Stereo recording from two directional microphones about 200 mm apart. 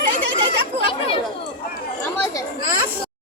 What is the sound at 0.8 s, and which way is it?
Speech, 25° left (ahead or behind).